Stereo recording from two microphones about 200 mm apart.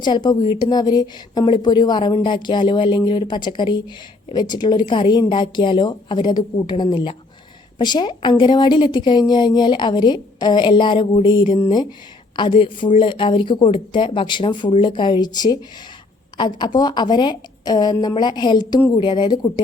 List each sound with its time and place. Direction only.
0.0 s a woman's voice: 20° left (ahead or behind)